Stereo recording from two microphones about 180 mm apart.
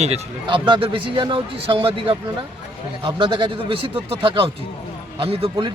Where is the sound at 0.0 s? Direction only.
30° right (ahead or behind).